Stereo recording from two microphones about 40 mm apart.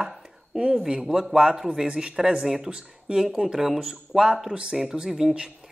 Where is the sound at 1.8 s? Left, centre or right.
Right.